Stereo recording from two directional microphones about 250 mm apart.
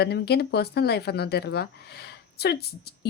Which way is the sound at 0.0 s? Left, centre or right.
Left.